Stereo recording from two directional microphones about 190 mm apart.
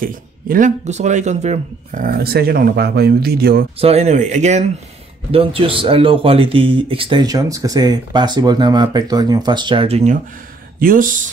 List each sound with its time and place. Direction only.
0.0 s speech: 45° right (ahead or behind)
3.8 s speech: 35° right (ahead or behind)
10.8 s speech: 45° right (ahead or behind)